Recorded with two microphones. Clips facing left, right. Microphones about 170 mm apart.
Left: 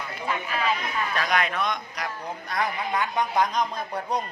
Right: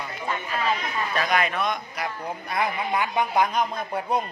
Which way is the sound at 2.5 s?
10° right (ahead or behind).